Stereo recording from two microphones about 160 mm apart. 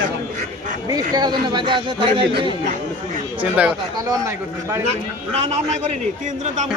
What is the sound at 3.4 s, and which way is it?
Speech, 10° right (ahead or behind).